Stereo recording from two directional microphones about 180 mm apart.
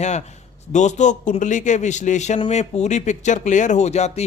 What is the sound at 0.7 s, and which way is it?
Speech, 40° left (ahead or behind).